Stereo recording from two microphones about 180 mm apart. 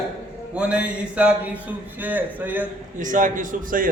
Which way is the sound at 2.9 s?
45° right (ahead or behind).